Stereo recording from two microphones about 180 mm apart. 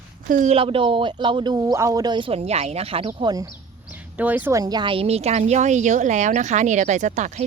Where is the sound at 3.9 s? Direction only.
10° right (ahead or behind).